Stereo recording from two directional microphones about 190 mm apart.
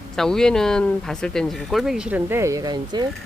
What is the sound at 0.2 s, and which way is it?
Speech, 5° left (ahead or behind).